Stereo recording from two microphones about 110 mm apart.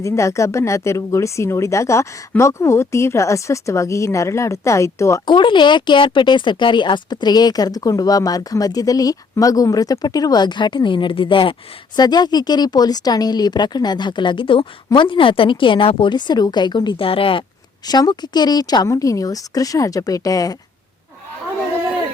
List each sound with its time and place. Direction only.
0.0 s speech: 25° left (ahead or behind)
5.2 s speech: 45° left (ahead or behind)
11.9 s a woman's voice: 40° left (ahead or behind); by 17.4 s 55° left (ahead or behind)
17.8 s speech: 40° left (ahead or behind)